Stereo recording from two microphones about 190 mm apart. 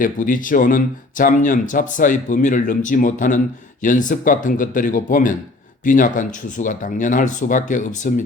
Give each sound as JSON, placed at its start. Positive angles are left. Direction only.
{"t": 0.0, "sound": "speech", "side_deg": 45}